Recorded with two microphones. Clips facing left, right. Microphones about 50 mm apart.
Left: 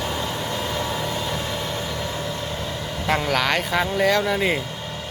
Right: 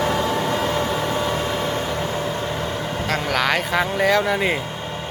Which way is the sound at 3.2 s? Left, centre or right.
Centre.